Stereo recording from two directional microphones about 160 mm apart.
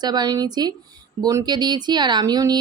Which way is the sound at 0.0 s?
25° right (ahead or behind).